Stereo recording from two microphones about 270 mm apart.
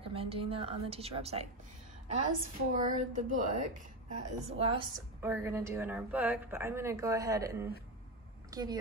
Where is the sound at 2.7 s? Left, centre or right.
Right.